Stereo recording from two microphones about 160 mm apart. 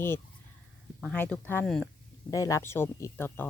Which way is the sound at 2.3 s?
20° left (ahead or behind).